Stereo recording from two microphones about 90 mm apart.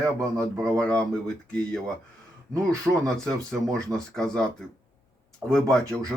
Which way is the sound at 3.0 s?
5° left (ahead or behind).